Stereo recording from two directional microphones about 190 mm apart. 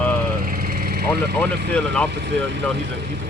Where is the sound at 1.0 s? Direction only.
55° right (ahead or behind).